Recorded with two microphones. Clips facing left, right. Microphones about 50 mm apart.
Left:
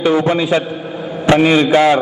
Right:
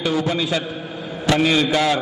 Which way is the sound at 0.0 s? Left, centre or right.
Left.